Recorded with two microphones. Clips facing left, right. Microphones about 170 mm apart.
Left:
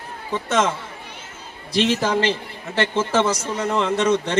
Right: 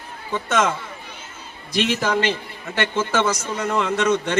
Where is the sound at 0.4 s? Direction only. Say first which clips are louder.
Even; 30° left (ahead or behind).